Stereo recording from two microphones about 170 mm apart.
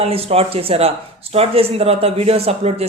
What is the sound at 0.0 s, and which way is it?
Speech, 35° right (ahead or behind).